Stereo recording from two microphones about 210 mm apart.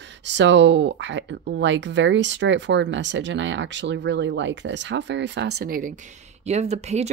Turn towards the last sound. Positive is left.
turn(degrees=-30)  # may be behind; listen again after turning